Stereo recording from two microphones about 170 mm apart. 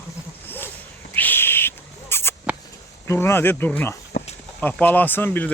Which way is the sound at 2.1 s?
15° left (ahead or behind).